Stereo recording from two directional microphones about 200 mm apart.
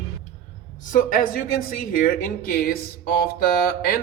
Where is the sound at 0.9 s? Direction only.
45° left (ahead or behind).